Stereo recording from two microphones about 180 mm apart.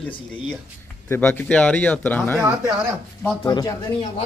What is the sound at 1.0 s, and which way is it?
Speech, 10° left (ahead or behind).